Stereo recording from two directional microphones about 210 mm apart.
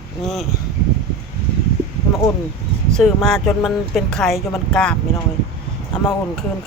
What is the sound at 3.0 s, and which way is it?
Speech, centre (ahead or behind).